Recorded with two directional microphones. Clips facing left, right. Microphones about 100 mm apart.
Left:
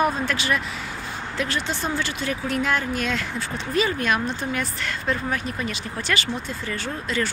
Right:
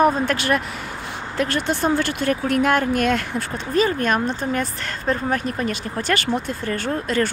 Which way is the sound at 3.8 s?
45° right (ahead or behind).